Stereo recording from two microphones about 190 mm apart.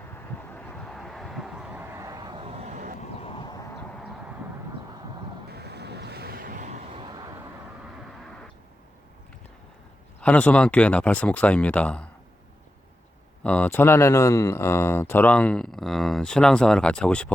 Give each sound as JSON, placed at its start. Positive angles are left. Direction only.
{"t": 0.0, "sound": "a sound", "side_deg": 10}
{"t": 2.5, "sound": "vehicle", "side_deg": -35}
{"t": 3.0, "sound": "vehicle", "side_deg": 30}
{"t": 5.5, "sound": "vehicle", "side_deg": -60}
{"t": 10.2, "sound": "speech", "side_deg": 5}
{"t": 13.4, "sound": "speech", "side_deg": 5}